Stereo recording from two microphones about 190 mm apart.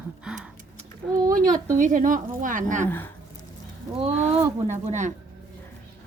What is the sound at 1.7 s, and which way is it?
A woman's voice, 40° right (ahead or behind).